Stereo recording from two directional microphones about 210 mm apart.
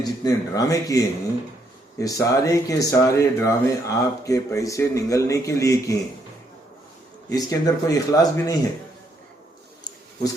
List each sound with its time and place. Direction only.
0.0 s speech: 15° left (ahead or behind)
7.3 s speech: 15° left (ahead or behind)